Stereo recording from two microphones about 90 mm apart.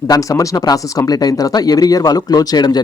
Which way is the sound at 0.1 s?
40° left (ahead or behind).